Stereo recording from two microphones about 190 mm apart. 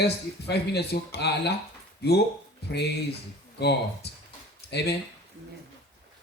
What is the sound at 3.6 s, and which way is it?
Speech, 60° left (ahead or behind).